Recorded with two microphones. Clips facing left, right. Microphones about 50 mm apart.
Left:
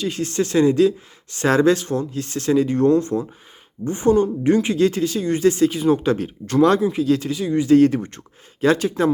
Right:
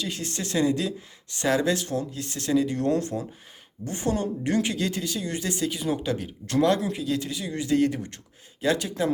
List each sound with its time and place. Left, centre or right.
0.0 s speech: left